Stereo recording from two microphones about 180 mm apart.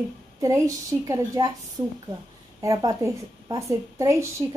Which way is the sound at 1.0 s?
20° right (ahead or behind).